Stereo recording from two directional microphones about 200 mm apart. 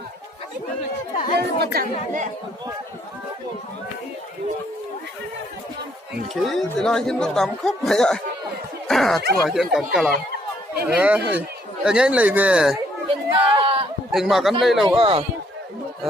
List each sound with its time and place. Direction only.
1.4 s speech: 55° right (ahead or behind)
6.3 s speech: centre (ahead or behind)
13.3 s a sound: 25° right (ahead or behind)
14.1 s speech: centre (ahead or behind)
14.8 s speech: 25° right (ahead or behind)